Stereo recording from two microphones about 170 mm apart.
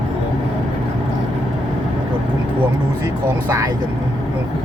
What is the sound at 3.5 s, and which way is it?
Speech, 25° right (ahead or behind).